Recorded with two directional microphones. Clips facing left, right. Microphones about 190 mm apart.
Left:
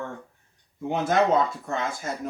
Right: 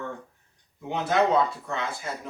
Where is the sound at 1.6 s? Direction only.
45° left (ahead or behind).